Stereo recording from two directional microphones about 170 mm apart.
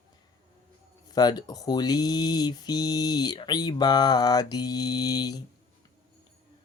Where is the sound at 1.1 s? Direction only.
25° left (ahead or behind).